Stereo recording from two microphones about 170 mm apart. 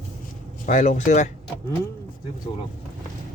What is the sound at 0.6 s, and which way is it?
Speech, 50° left (ahead or behind).